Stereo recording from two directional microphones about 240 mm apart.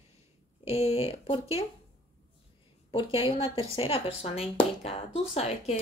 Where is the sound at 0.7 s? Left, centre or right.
Left.